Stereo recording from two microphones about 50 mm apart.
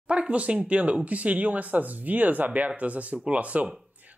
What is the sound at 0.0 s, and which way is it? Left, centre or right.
Speech, right.